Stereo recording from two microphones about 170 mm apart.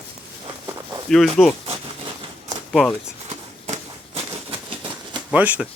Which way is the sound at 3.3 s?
40° right (ahead or behind).